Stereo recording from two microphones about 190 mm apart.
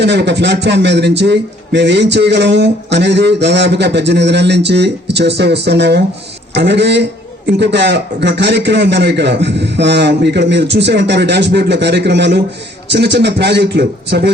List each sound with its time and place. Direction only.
0.0 s speech: 65° right (ahead or behind)